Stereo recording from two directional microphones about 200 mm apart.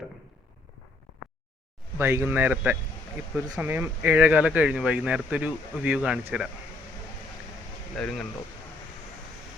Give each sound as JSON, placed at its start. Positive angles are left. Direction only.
{"t": 2.0, "sound": "speech", "side_deg": -10}
{"t": 7.9, "sound": "speech", "side_deg": 5}